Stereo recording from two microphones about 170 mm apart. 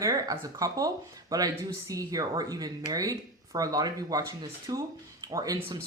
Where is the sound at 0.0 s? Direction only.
20° right (ahead or behind).